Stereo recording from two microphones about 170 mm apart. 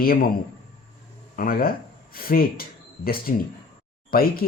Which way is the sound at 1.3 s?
55° left (ahead or behind).